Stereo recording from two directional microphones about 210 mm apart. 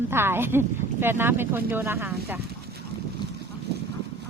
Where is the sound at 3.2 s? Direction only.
20° left (ahead or behind).